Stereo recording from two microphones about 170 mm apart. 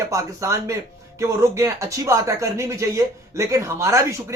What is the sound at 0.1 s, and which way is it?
Speech, 15° right (ahead or behind).